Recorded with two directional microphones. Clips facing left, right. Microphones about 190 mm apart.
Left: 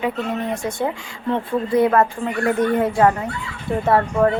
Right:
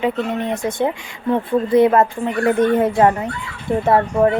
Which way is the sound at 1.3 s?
20° right (ahead or behind).